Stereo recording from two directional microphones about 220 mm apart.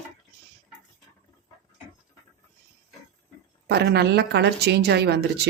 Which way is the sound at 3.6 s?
50° right (ahead or behind).